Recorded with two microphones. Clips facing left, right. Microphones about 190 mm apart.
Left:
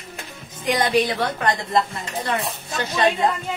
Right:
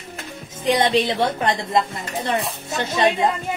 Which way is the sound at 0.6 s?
25° right (ahead or behind).